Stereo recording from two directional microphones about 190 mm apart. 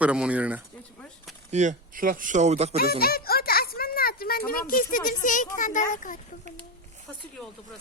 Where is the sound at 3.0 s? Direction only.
55° left (ahead or behind).